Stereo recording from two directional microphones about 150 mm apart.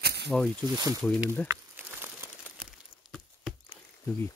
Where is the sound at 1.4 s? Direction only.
15° right (ahead or behind).